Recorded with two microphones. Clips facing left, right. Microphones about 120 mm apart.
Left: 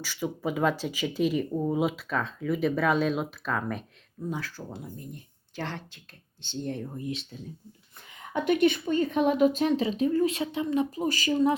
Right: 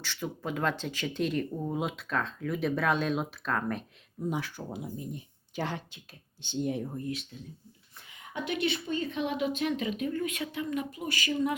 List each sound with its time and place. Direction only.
0.0 s speech: 5° left (ahead or behind)
4.3 s speech: 15° right (ahead or behind)
8.3 s speech: 50° left (ahead or behind)